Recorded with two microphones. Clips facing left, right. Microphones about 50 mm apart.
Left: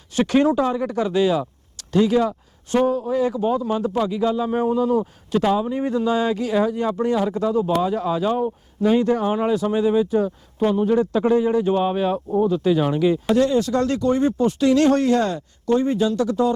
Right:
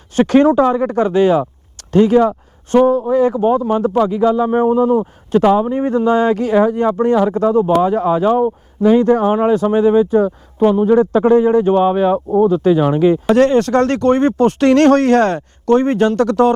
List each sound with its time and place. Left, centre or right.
0.2 s a man's voice: right
10.7 s a man's voice: right
10.9 s a man's voice: right
11.7 s a man's voice: right
11.9 s a man's voice: right
12.7 s a man's voice: right
13.3 s speech: right